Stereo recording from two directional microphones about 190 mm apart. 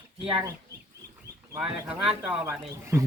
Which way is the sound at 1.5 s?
10° right (ahead or behind).